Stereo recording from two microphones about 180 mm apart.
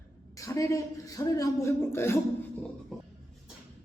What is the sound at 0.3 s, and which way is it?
Speech, 20° left (ahead or behind).